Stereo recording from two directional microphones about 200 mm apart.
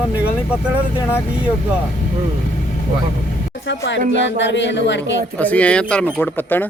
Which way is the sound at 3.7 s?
65° left (ahead or behind).